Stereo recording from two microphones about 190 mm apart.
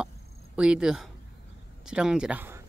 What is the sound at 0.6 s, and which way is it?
Speech, 5° right (ahead or behind).